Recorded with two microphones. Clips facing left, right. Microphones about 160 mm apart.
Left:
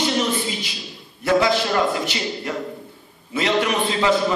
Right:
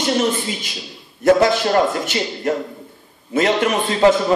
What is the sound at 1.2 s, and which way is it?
A man's voice, 50° right (ahead or behind).